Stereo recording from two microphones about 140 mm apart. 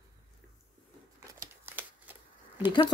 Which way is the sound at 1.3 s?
25° right (ahead or behind).